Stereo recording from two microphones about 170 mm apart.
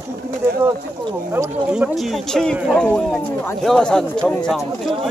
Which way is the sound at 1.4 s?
15° right (ahead or behind).